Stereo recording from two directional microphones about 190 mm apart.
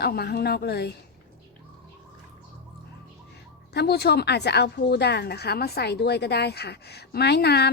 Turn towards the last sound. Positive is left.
turn(degrees=60)  # may be behind; listen again after turning